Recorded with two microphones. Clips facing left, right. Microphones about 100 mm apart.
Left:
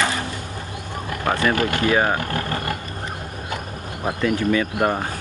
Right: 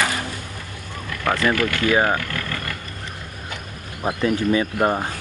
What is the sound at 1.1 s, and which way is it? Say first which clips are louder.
Speech: even; 30° left (ahead or behind).